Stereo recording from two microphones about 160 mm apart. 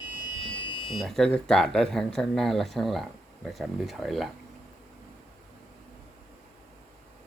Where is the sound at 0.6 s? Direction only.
30° left (ahead or behind).